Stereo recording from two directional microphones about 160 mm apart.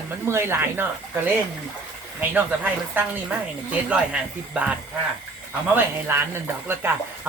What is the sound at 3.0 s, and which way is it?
Speech, 10° right (ahead or behind).